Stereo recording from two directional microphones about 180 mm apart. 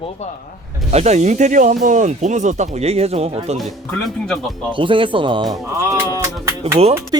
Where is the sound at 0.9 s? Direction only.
35° right (ahead or behind).